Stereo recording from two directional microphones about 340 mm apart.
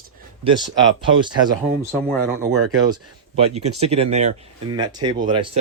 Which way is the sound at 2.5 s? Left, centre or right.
Right.